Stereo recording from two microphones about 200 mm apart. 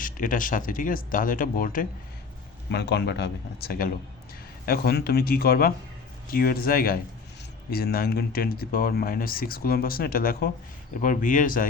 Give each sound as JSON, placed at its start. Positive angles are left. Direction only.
{"t": 0.0, "sound": "speech", "side_deg": 40}
{"t": 2.6, "sound": "speech", "side_deg": 55}